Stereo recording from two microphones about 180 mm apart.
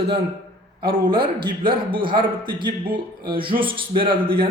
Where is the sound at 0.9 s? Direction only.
30° right (ahead or behind).